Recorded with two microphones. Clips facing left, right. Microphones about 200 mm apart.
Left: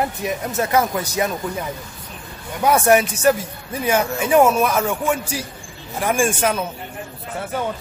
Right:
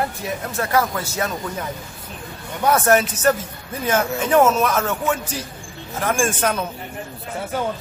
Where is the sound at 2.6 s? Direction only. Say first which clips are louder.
Left 1 dB; 10° left (ahead or behind).